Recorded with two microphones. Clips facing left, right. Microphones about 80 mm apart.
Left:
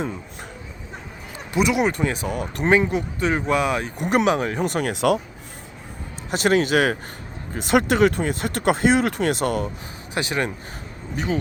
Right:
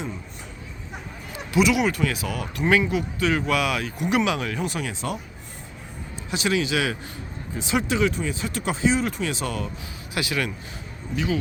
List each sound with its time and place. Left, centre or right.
1.5 s speech: left
3.9 s speech: left
4.6 s speech: left
4.9 s speech: left
6.3 s speech: left
10.2 s speech: left